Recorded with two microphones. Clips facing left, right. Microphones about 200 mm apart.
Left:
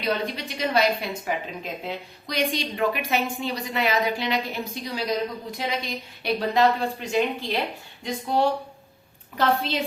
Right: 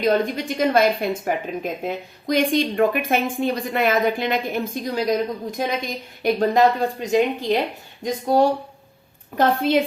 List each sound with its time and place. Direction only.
0.0 s a woman's voice: 50° right (ahead or behind)